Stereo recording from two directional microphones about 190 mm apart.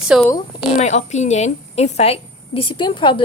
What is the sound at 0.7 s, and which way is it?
A woman's voice, 40° left (ahead or behind).